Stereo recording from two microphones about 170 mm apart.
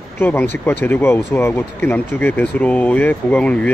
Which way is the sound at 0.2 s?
10° left (ahead or behind).